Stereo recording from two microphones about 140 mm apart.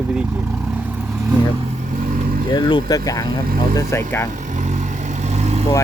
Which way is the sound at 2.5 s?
35° left (ahead or behind).